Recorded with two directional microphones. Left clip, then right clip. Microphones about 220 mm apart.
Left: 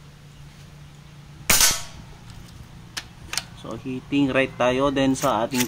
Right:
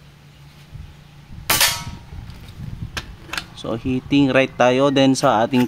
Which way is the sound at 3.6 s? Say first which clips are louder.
Right 9 dB; 45° right (ahead or behind).